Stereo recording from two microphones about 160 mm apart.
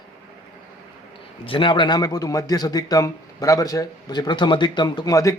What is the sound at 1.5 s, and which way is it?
A man's voice, 30° left (ahead or behind).